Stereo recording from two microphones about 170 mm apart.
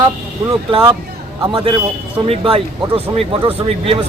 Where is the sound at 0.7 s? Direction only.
25° right (ahead or behind).